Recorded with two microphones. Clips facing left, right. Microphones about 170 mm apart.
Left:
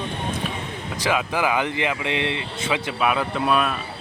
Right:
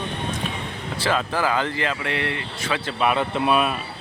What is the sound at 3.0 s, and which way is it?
Speech, centre (ahead or behind).